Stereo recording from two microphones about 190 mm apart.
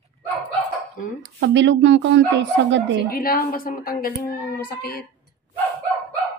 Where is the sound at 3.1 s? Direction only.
50° left (ahead or behind).